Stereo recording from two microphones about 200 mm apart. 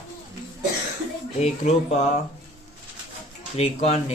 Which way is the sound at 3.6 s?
30° left (ahead or behind).